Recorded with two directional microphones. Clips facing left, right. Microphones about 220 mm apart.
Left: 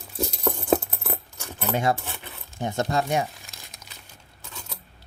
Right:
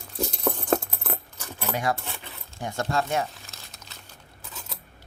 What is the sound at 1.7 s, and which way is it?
Speech, 25° left (ahead or behind).